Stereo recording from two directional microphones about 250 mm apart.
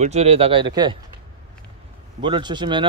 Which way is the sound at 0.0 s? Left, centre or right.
Right.